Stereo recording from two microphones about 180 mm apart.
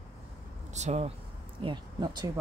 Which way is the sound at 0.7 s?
40° right (ahead or behind).